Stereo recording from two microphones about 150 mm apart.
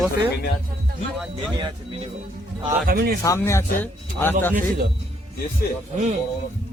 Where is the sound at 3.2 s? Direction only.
20° left (ahead or behind).